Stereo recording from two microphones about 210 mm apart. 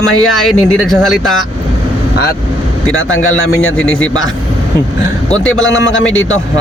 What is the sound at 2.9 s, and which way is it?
Speech, 75° left (ahead or behind).